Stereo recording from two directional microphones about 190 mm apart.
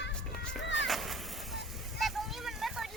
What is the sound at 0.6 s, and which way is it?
Music, 70° left (ahead or behind).